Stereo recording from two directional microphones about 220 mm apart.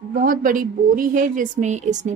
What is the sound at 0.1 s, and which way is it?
A woman's voice, 40° right (ahead or behind).